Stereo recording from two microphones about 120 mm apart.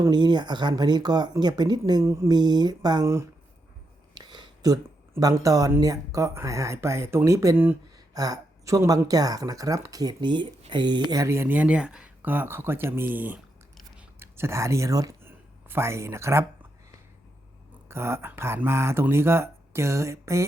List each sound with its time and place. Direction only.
0.1 s speech: 35° right (ahead or behind)
4.1 s a sound: 35° right (ahead or behind)
5.1 s speech: 25° right (ahead or behind)
7.9 s speech: 30° right (ahead or behind)
11.3 s speech: 15° right (ahead or behind)
15.2 s a sound: 20° right (ahead or behind)
17.8 s speech: 20° right (ahead or behind)